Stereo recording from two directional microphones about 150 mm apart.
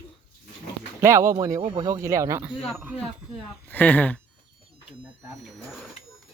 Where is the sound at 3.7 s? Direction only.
10° left (ahead or behind).